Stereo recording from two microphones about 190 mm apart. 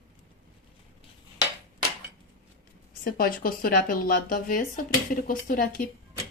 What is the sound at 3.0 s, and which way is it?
A woman's voice, 50° left (ahead or behind).